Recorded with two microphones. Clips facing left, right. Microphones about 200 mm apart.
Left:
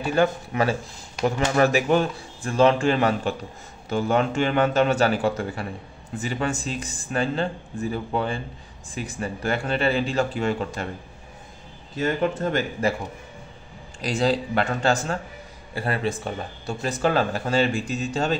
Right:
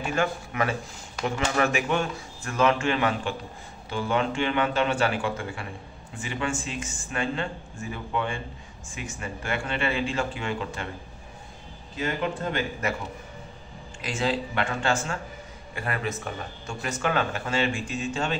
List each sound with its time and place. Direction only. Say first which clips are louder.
0.0 s speech: left 5 dB; 35° left (ahead or behind)
12.8 s speech: left 6 dB; 30° left (ahead or behind)
14.0 s speech: left 5 dB; 35° left (ahead or behind)